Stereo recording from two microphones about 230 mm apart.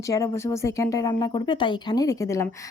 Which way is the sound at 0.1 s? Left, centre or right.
Centre.